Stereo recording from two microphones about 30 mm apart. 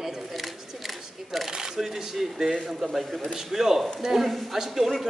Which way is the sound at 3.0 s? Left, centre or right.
Centre.